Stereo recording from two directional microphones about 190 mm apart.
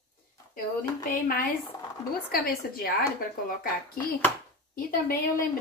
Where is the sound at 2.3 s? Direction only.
50° left (ahead or behind).